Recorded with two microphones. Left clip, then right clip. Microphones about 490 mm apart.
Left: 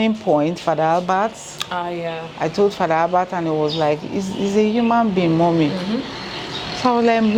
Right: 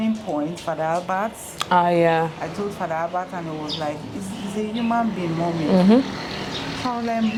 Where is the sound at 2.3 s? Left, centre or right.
Left.